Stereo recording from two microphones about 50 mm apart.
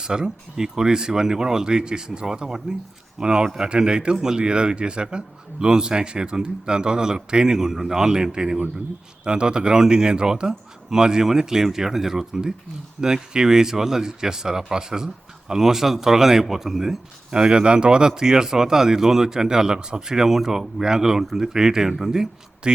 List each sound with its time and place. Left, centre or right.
0.0 s speech: centre
17.3 s speech: centre